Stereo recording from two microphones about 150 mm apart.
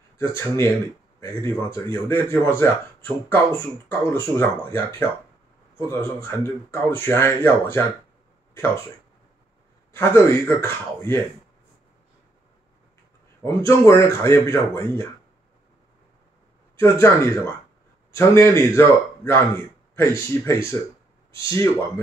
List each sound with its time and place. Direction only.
0.2 s speech: 15° left (ahead or behind)
1.7 s speech: 15° left (ahead or behind)
9.9 s speech: 15° left (ahead or behind)
13.4 s speech: 20° left (ahead or behind)
16.7 s speech: 20° left (ahead or behind)